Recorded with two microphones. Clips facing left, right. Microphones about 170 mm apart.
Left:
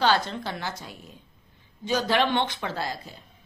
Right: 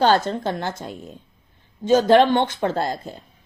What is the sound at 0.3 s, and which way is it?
Speech, 50° right (ahead or behind).